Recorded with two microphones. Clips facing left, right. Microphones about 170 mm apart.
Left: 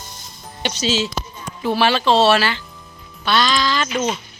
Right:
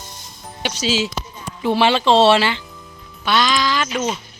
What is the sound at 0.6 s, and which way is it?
Speech, 10° right (ahead or behind).